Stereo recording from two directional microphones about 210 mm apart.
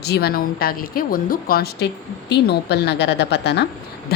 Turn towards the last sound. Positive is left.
turn(degrees=55)  # may be behind; listen again after turning